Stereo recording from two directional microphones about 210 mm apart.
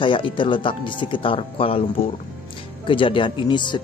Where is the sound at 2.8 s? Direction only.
25° left (ahead or behind).